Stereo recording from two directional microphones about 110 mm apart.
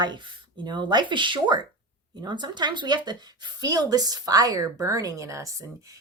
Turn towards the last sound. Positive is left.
turn(degrees=-30)  # may be behind; listen again after turning